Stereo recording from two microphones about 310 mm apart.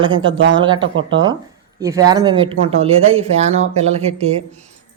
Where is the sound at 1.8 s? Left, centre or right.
Centre.